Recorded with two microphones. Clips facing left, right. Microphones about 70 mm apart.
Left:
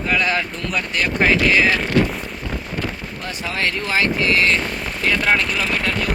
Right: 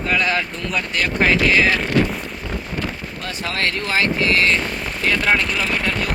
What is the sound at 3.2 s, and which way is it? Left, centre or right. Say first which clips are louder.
Speech: even; centre.